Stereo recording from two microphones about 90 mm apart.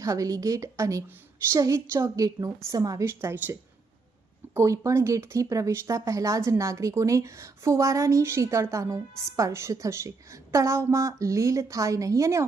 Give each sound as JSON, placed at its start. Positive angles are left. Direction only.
{"t": 0.0, "sound": "speech", "side_deg": -40}
{"t": 4.5, "sound": "speech", "side_deg": -35}